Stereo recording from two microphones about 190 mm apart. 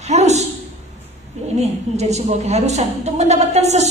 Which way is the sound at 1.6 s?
35° right (ahead or behind).